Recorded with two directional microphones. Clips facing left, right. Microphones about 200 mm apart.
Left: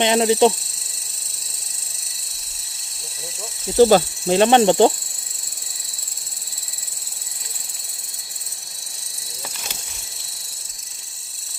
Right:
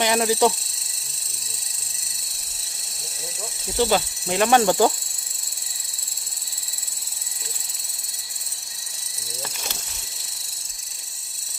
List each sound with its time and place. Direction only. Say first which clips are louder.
0.0 s cricket: left 4 dB; 25° left (ahead or behind)
3.8 s insect: left 8 dB; 40° left (ahead or behind)
4.4 s cricket: left 4 dB; 25° left (ahead or behind)